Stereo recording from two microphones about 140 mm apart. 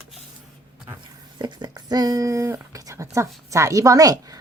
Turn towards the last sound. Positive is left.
turn(degrees=-25)  # may be behind; listen again after turning